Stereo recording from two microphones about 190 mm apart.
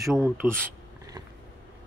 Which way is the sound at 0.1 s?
5° right (ahead or behind).